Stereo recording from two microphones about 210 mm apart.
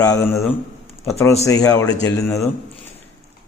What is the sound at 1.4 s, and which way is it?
A man's voice, 15° left (ahead or behind).